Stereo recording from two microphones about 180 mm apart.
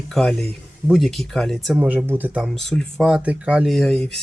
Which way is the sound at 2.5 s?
5° left (ahead or behind).